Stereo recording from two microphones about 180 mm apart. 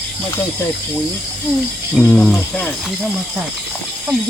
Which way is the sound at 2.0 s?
5° left (ahead or behind).